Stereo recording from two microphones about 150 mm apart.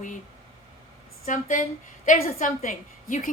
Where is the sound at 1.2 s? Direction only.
60° left (ahead or behind).